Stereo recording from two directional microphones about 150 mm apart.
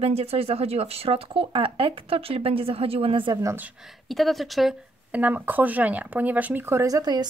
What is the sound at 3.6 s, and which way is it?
Speech, 5° right (ahead or behind).